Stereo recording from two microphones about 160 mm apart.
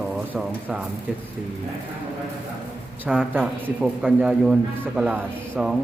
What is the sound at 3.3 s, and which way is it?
A man's voice, 10° right (ahead or behind).